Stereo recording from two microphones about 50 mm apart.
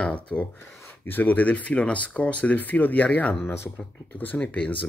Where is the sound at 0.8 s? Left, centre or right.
Left.